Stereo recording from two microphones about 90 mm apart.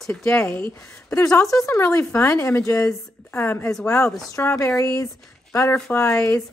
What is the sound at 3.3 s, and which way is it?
A woman's voice, 25° left (ahead or behind).